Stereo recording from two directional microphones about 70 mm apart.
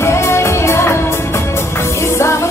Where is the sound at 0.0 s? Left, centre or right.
Left.